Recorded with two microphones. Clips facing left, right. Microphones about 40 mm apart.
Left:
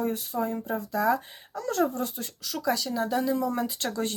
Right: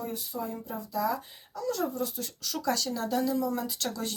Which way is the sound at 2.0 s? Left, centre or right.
Left.